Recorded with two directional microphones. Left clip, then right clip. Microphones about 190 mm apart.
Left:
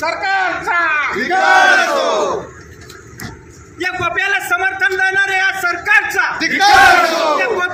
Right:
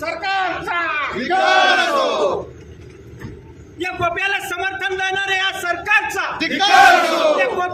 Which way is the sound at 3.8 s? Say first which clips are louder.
Left 3 dB; 5° left (ahead or behind).